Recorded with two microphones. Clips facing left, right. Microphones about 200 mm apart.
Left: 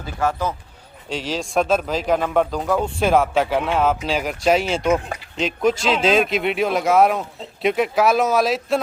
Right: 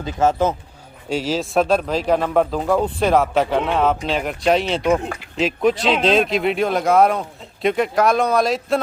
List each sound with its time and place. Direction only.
0.0 s speech: 20° right (ahead or behind)
1.1 s speech: 5° right (ahead or behind)